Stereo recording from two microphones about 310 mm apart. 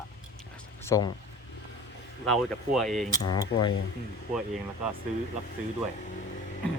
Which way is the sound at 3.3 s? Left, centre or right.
Centre.